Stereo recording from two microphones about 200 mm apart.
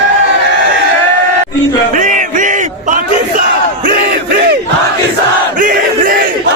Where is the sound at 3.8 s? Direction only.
50° right (ahead or behind).